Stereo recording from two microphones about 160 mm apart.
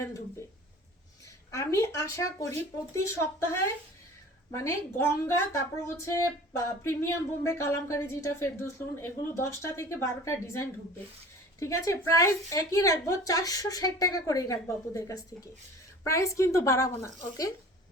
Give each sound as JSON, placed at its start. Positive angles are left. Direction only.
{"t": 1.5, "sound": "a woman's voice", "side_deg": 20}